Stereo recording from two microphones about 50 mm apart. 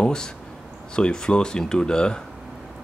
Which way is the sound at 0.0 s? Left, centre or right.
Centre.